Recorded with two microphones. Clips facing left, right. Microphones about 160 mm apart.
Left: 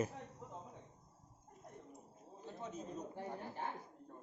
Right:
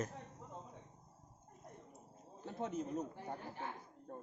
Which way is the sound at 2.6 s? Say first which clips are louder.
Right 7 dB; 65° right (ahead or behind).